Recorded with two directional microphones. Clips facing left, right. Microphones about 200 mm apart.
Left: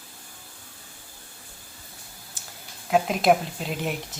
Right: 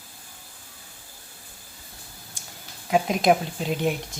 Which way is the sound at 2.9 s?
Centre (ahead or behind).